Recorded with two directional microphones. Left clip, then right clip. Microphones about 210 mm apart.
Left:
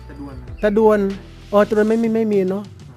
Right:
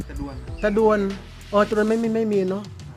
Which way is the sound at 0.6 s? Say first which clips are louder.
Left 4 dB; 30° left (ahead or behind).